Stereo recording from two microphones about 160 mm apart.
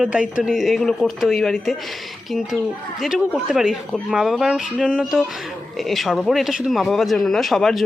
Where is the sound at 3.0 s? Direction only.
Centre (ahead or behind).